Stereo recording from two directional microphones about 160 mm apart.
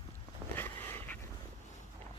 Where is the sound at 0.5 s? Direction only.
10° left (ahead or behind).